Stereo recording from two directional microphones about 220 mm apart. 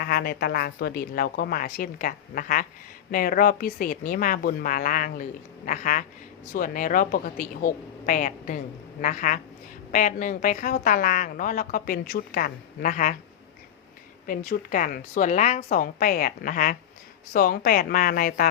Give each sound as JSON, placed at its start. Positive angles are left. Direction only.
{"t": 0.0, "sound": "a woman's voice", "side_deg": 45}
{"t": 14.3, "sound": "a woman's voice", "side_deg": 40}